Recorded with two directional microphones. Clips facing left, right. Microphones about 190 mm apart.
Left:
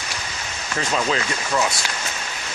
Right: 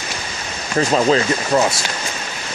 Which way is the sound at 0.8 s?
40° right (ahead or behind).